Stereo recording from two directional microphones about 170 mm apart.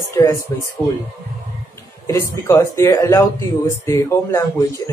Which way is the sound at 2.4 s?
15° left (ahead or behind).